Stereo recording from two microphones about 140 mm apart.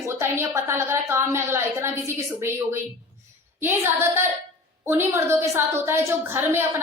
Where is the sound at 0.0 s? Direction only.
20° right (ahead or behind).